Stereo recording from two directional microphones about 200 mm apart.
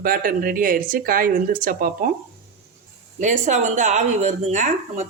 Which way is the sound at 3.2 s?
35° right (ahead or behind).